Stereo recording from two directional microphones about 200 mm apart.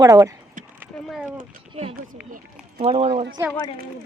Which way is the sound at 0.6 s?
40° right (ahead or behind).